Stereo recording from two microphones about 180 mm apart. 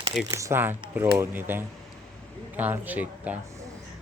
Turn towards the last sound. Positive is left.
turn(degrees=-10)  # may be behind; listen again after turning